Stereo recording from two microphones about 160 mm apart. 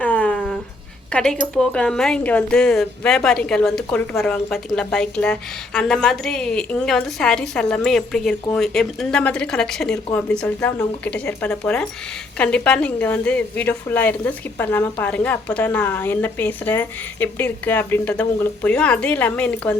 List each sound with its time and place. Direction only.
0.0 s dog: 10° left (ahead or behind)
1.1 s a woman's voice: 5° left (ahead or behind)